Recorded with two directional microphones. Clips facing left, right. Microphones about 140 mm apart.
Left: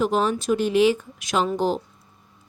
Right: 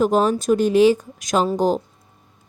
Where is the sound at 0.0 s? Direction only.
45° right (ahead or behind).